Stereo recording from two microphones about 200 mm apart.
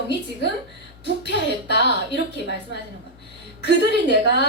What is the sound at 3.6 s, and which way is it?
Speech, 60° left (ahead or behind).